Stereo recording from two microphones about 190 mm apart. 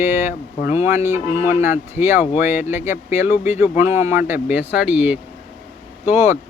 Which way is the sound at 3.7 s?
40° left (ahead or behind).